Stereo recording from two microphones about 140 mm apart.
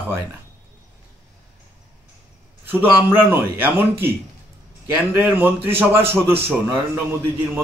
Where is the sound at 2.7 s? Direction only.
15° right (ahead or behind).